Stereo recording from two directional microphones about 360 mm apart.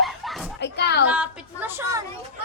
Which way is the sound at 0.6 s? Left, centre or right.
Left.